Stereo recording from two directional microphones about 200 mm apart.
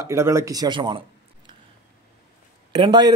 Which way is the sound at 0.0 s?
15° right (ahead or behind).